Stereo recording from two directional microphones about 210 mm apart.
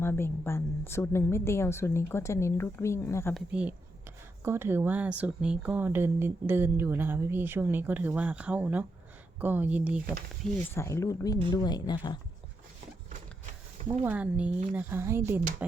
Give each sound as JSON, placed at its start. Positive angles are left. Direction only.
{"t": 0.0, "sound": "a woman's voice", "side_deg": 10}
{"t": 3.3, "sound": "speech", "side_deg": -5}
{"t": 10.8, "sound": "a woman's voice", "side_deg": 15}
{"t": 14.0, "sound": "speech", "side_deg": -5}